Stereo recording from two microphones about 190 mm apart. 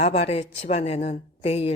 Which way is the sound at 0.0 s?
35° left (ahead or behind).